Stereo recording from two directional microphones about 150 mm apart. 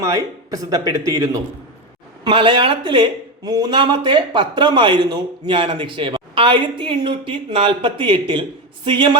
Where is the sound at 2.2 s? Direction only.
35° right (ahead or behind).